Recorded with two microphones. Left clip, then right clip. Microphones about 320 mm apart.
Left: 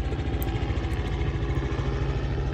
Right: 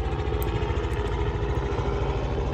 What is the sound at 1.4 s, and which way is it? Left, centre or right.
Vehicle, centre.